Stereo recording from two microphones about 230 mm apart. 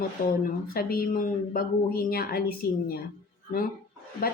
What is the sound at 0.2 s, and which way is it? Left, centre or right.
Speech, left.